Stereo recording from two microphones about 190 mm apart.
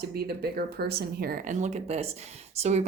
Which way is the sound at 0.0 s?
55° right (ahead or behind).